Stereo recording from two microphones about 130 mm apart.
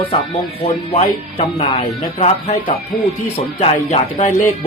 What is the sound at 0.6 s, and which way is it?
Speech, 55° left (ahead or behind).